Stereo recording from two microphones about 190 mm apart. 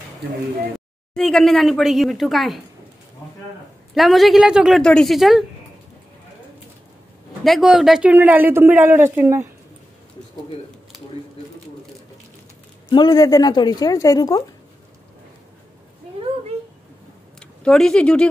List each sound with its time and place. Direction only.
0.7 s speech: centre (ahead or behind)
3.9 s a woman's voice: centre (ahead or behind)
7.4 s a man's voice: centre (ahead or behind)
12.9 s a woman's voice: 20° left (ahead or behind)
17.4 s speech: 5° left (ahead or behind)